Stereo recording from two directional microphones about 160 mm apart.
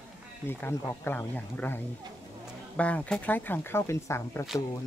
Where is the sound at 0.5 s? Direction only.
15° left (ahead or behind).